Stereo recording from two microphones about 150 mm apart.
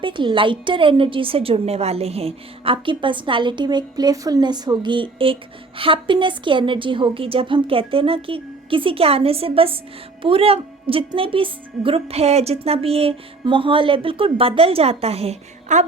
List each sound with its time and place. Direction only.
0.0 s a woman's voice: 35° right (ahead or behind)